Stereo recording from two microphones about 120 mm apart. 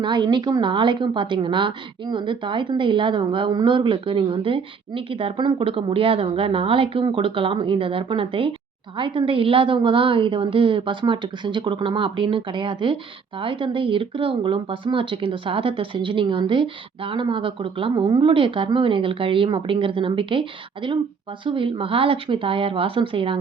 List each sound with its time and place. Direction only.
0.0 s a woman's voice: 40° right (ahead or behind)